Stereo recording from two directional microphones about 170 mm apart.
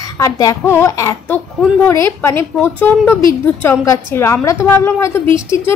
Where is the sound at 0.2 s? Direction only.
20° left (ahead or behind).